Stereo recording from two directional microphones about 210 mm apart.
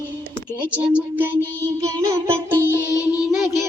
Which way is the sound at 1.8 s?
15° right (ahead or behind).